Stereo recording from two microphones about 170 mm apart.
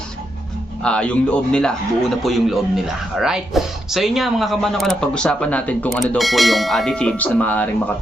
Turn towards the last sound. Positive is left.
turn(degrees=10)  # may be behind; listen again after turning